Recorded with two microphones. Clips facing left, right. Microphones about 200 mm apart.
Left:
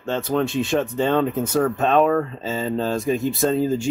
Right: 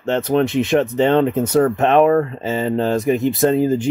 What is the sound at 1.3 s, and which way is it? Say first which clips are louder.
Speech: right 5 dB; 65° right (ahead or behind).